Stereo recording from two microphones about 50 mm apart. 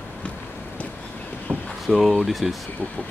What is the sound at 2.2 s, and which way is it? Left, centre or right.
Speech, centre.